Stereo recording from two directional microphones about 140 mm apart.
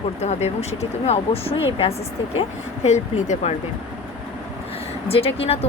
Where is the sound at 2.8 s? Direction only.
55° left (ahead or behind).